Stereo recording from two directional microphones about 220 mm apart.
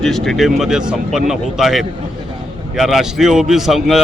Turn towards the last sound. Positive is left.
turn(degrees=0)  # may be behind; listen again after turning